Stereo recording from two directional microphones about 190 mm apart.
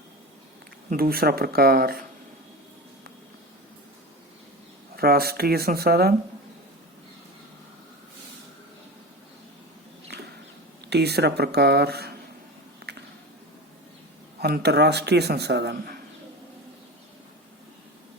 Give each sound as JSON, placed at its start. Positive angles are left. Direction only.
{"t": 0.9, "sound": "speech", "side_deg": -50}
{"t": 4.9, "sound": "a man's voice", "side_deg": -55}
{"t": 10.1, "sound": "a sound", "side_deg": -60}
{"t": 10.8, "sound": "a man's voice", "side_deg": -60}
{"t": 12.8, "sound": "squish", "side_deg": -60}
{"t": 14.4, "sound": "a man's voice", "side_deg": -55}